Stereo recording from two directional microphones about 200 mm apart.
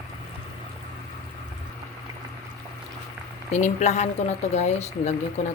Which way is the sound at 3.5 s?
35° left (ahead or behind).